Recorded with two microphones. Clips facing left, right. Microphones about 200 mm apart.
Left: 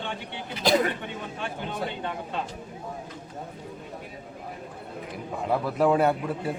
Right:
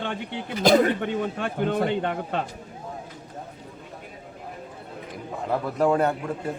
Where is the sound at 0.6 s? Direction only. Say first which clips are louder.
Right 5 dB; 50° right (ahead or behind).